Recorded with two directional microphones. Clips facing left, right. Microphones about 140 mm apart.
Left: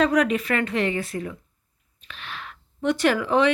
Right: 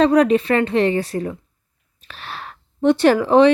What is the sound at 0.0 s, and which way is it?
Speech, 30° right (ahead or behind).